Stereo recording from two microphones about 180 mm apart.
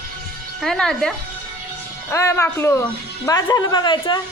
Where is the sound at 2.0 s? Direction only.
15° left (ahead or behind).